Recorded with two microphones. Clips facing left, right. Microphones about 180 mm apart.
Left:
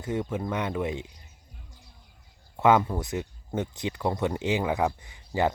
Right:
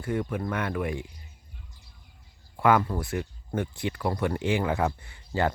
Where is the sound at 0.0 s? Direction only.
20° left (ahead or behind).